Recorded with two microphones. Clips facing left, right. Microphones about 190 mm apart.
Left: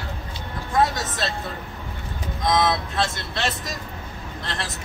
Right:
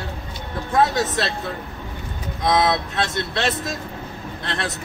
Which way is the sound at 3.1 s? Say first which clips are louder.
Right 5 dB; 60° right (ahead or behind).